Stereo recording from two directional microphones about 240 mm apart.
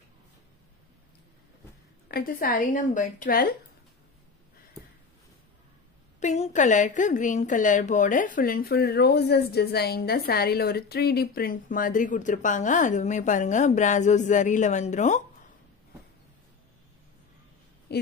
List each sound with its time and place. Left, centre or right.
2.0 s a woman's voice: left
6.1 s a woman's voice: left